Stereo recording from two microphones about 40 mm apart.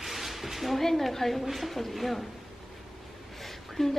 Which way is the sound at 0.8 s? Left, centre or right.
Centre.